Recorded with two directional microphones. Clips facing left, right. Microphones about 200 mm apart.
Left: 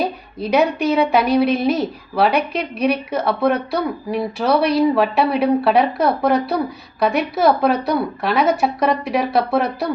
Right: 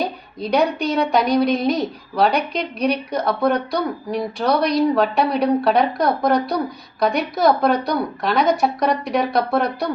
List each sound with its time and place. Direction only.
0.3 s a woman's voice: 5° left (ahead or behind)